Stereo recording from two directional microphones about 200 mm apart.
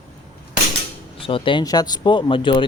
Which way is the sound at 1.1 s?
25° left (ahead or behind).